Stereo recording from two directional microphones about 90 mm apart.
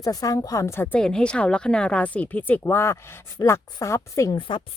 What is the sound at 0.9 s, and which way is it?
A woman's voice, 10° left (ahead or behind).